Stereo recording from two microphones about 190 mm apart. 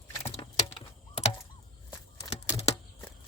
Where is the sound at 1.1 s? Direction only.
35° left (ahead or behind).